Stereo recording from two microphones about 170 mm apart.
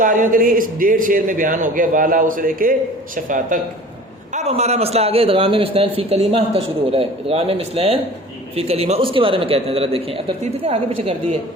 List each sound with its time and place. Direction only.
0.0 s a man's voice: 55° right (ahead or behind)
4.4 s a man's voice: 40° right (ahead or behind)